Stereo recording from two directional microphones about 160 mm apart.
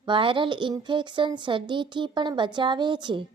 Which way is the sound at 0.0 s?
30° right (ahead or behind).